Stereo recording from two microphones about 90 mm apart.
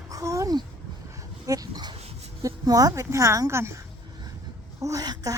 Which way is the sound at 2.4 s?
40° right (ahead or behind).